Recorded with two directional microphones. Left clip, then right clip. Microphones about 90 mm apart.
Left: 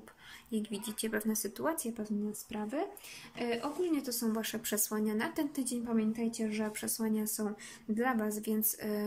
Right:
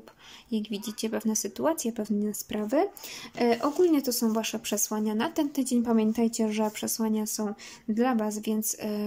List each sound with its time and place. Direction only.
0.5 s speech: 25° right (ahead or behind)
2.5 s speech: 55° right (ahead or behind)
4.0 s speech: 40° right (ahead or behind)
4.3 s speech: 20° right (ahead or behind)
5.9 s a woman's voice: 45° right (ahead or behind)
6.8 s speech: 25° right (ahead or behind)